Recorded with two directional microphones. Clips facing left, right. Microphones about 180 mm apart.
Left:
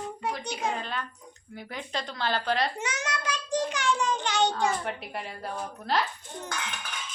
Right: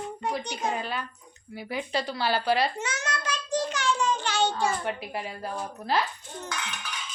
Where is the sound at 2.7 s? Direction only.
15° left (ahead or behind).